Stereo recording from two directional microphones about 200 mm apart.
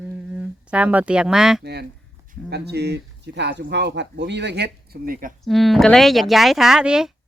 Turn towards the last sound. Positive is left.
turn(degrees=-5)  # may be behind; listen again after turning